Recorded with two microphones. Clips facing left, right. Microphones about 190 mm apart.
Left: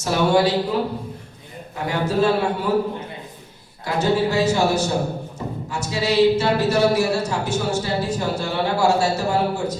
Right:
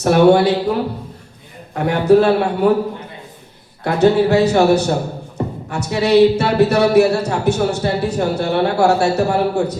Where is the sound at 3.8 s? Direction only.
65° right (ahead or behind).